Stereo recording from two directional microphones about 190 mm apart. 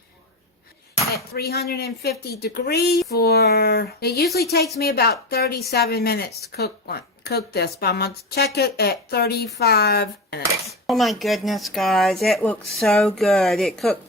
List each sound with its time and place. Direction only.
1.1 s speech: 55° left (ahead or behind)
10.7 s speech: centre (ahead or behind)